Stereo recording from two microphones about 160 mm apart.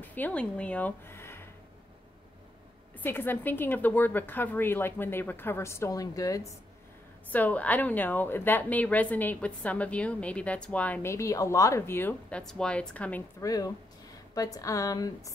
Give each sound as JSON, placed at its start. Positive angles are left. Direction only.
{"t": 0.0, "sound": "speech", "side_deg": 10}
{"t": 3.0, "sound": "a woman's voice", "side_deg": 15}
{"t": 7.3, "sound": "a woman's voice", "side_deg": 10}
{"t": 13.4, "sound": "a woman's voice", "side_deg": 20}